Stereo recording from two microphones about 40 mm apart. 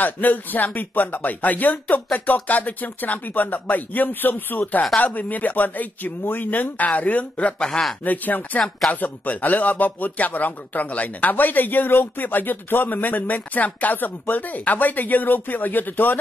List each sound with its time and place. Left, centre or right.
0.0 s speech: left
7.5 s speech: left
8.0 s speech: left